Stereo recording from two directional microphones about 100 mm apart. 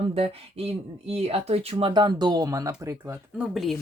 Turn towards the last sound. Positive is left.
turn(degrees=0)  # may be behind; listen again after turning